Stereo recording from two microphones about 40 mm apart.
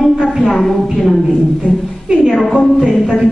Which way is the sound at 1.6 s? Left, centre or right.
Centre.